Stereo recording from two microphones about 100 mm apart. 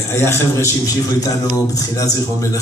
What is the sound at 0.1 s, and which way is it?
Speech, 25° left (ahead or behind).